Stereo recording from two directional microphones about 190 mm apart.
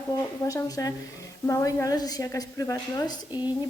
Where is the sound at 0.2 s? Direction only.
15° left (ahead or behind).